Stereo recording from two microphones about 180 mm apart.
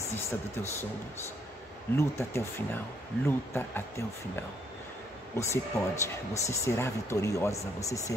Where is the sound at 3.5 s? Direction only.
15° left (ahead or behind).